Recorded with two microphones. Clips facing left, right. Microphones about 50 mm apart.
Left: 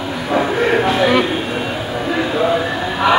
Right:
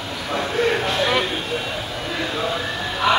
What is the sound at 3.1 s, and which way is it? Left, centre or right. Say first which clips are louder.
Crowd: left 5 dB; centre.